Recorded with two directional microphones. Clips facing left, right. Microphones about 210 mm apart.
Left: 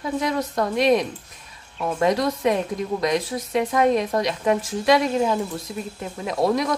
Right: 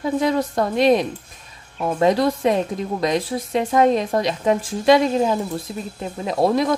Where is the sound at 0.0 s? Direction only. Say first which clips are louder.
Right 4 dB; 30° right (ahead or behind).